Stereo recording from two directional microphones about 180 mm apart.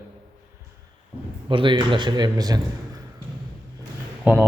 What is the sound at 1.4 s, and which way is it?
A man's voice, 25° right (ahead or behind).